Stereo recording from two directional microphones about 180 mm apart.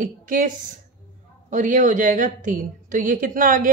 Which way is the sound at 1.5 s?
45° right (ahead or behind).